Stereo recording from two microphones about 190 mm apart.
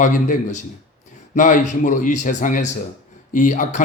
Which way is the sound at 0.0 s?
40° left (ahead or behind).